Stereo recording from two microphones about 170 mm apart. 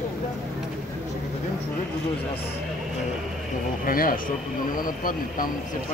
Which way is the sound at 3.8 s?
55° left (ahead or behind).